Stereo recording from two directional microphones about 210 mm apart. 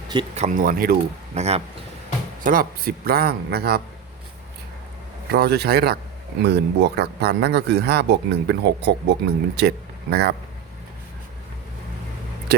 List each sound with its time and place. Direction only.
0.1 s speech: 30° right (ahead or behind); by 0.9 s 45° right (ahead or behind)
1.4 s speech: 30° right (ahead or behind)
2.4 s speech: 40° right (ahead or behind)
5.3 s speech: 50° right (ahead or behind)
12.5 s speech: 50° right (ahead or behind)